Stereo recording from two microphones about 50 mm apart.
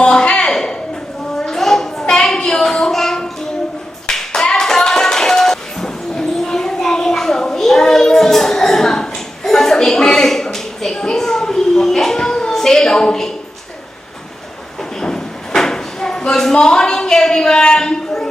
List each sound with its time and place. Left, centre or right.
0.0 s a sound: centre
4.0 s clapping: centre
15.0 s drawer open or close: centre